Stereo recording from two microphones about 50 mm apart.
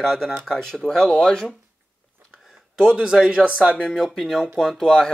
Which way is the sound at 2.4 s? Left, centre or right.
Centre.